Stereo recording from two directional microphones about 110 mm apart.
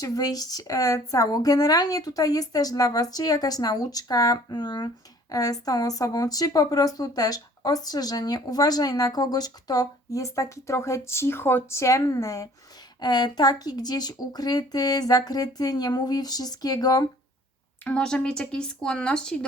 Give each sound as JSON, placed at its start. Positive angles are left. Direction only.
{"t": 0.0, "sound": "speech", "side_deg": 35}
{"t": 17.8, "sound": "speech", "side_deg": 10}